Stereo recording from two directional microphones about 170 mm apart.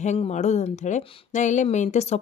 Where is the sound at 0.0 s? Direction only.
40° left (ahead or behind).